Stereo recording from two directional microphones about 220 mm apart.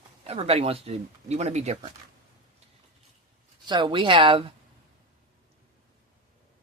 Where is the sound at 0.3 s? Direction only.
25° right (ahead or behind).